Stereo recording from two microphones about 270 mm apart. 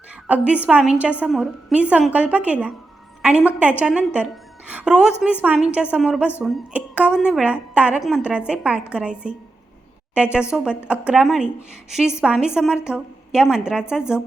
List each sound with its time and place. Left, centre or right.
0.3 s a woman's voice: centre
10.5 s a woman's voice: centre